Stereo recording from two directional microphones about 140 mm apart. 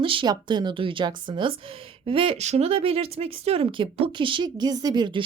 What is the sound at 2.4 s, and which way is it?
A woman's voice, 50° right (ahead or behind).